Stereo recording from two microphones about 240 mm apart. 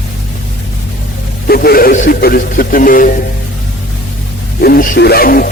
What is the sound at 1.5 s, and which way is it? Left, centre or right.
Speech, left.